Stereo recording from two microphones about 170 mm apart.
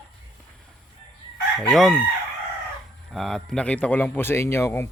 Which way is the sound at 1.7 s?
Centre (ahead or behind).